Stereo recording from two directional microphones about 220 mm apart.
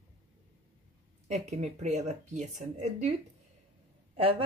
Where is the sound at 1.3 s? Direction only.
30° right (ahead or behind).